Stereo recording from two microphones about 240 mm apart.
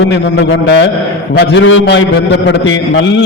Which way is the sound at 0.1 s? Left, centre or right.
Left.